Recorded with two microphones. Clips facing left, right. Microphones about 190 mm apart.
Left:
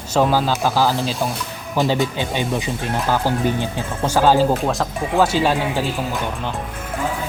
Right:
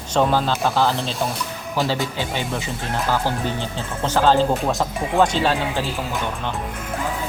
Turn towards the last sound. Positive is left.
turn(degrees=10)  # may be behind; listen again after turning